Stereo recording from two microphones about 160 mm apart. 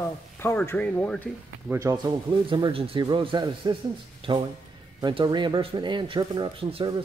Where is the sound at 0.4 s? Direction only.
15° left (ahead or behind).